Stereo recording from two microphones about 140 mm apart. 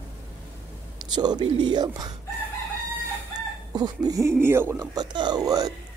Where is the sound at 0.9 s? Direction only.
30° right (ahead or behind).